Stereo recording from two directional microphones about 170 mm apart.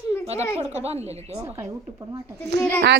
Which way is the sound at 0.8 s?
40° right (ahead or behind).